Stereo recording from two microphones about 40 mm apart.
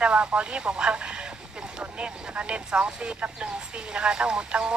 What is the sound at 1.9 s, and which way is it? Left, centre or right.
Speech, right.